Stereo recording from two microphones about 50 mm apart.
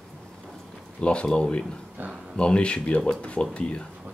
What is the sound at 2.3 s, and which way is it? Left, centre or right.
Speech, left.